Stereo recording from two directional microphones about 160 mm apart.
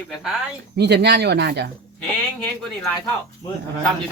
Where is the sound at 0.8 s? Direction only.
90° right.